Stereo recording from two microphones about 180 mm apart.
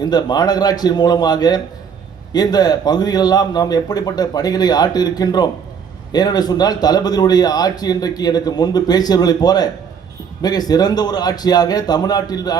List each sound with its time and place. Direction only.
0.0 s a man's voice: 20° left (ahead or behind)